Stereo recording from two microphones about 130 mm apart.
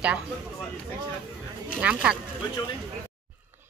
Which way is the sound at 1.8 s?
10° right (ahead or behind).